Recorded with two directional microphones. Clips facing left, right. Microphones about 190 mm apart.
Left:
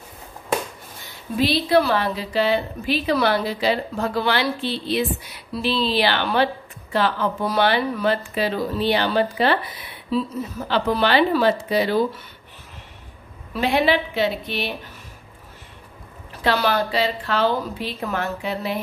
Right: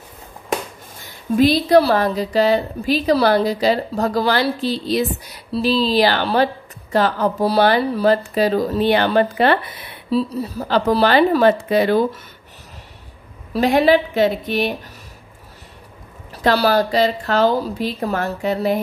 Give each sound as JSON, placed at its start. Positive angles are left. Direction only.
{"t": 1.3, "sound": "a woman's voice", "side_deg": -45}
{"t": 10.1, "sound": "speech", "side_deg": -35}
{"t": 13.5, "sound": "speech", "side_deg": -40}
{"t": 16.4, "sound": "a woman's voice", "side_deg": -40}